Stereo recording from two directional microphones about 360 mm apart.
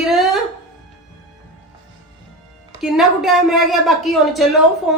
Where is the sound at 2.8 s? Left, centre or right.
Centre.